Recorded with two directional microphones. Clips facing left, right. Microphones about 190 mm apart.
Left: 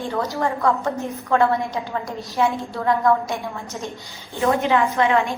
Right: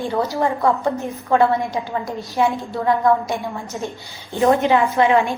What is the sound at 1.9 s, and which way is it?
A woman's voice, centre (ahead or behind).